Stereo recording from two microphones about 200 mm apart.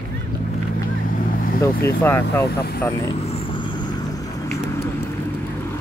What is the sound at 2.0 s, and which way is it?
Speech, 10° left (ahead or behind).